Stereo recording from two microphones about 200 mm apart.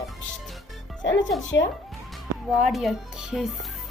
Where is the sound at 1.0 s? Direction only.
65° left (ahead or behind).